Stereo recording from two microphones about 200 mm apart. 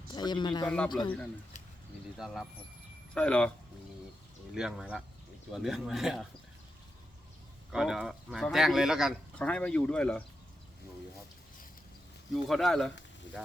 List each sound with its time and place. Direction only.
0.1 s speech: 20° left (ahead or behind)
2.1 s speech: centre (ahead or behind)
4.5 s speech: 5° right (ahead or behind)
7.7 s speech: 5° right (ahead or behind)
12.5 s speech: centre (ahead or behind)